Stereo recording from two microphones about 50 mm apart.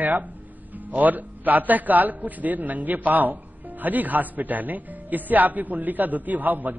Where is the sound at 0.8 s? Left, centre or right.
Right.